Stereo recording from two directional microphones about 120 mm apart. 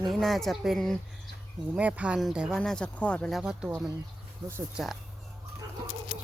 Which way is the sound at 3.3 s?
5° right (ahead or behind).